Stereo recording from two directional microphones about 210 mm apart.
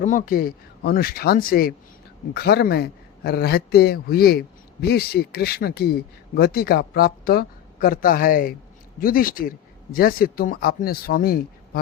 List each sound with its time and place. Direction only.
0.0 s a man's voice: 40° left (ahead or behind)